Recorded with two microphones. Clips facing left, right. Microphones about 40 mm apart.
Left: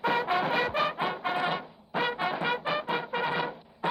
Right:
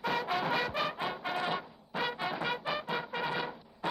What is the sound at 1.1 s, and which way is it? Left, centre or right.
Brass instrument, centre.